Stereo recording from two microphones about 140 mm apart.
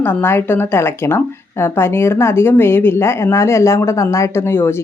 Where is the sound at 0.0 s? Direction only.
15° left (ahead or behind).